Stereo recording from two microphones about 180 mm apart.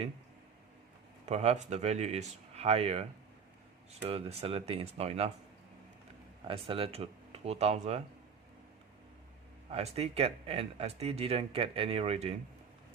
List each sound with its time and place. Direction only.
1.2 s speech: 35° right (ahead or behind)
6.5 s speech: 30° right (ahead or behind)
9.6 s speech: 35° right (ahead or behind)